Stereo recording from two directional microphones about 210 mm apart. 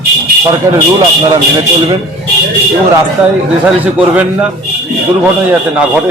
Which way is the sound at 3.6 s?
5° right (ahead or behind).